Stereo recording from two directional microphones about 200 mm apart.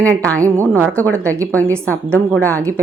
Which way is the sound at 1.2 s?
15° right (ahead or behind).